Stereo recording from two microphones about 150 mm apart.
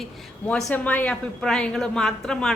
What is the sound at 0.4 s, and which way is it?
A woman's voice, 10° left (ahead or behind).